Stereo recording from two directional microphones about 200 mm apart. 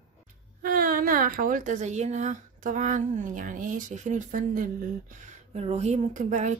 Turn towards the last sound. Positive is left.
turn(degrees=-35)  # may be behind; listen again after turning